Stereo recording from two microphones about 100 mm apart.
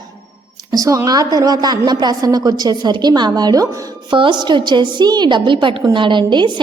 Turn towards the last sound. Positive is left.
turn(degrees=-50)  # may be behind; listen again after turning